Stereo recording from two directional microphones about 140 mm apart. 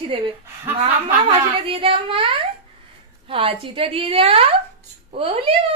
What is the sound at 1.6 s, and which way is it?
A woman's voice, 40° right (ahead or behind).